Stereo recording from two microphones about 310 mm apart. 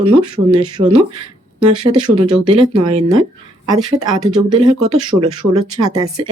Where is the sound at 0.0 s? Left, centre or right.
Centre.